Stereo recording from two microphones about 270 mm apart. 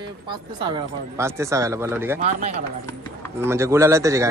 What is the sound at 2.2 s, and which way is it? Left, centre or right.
Speech, right.